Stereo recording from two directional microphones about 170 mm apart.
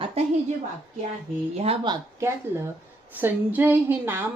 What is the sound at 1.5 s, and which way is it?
Speech, 35° right (ahead or behind).